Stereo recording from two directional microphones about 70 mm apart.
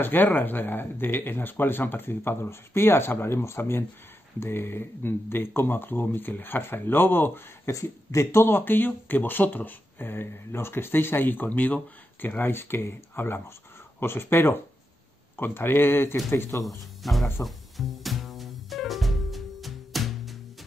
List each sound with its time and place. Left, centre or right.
0.0 s speech: left
7.7 s speech: left
16.6 s music: centre